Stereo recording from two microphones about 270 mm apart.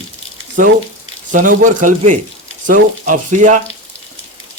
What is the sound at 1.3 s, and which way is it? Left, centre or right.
Speech, right.